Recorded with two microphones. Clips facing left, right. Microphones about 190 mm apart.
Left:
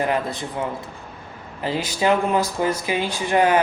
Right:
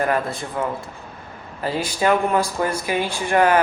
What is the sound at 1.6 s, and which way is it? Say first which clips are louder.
Speech: even; 20° left (ahead or behind).